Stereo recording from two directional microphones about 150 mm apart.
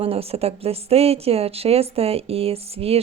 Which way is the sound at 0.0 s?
40° right (ahead or behind).